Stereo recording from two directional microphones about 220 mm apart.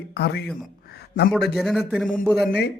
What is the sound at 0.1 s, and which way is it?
Speech, 50° left (ahead or behind).